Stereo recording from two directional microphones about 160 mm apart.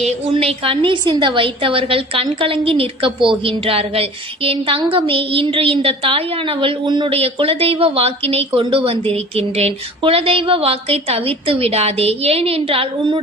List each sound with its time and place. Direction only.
0.0 s a woman's voice: 40° right (ahead or behind)